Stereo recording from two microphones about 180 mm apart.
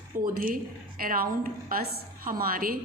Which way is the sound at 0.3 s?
50° right (ahead or behind).